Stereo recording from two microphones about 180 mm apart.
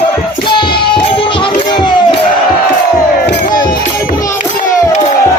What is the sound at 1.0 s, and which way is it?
Music, 30° left (ahead or behind).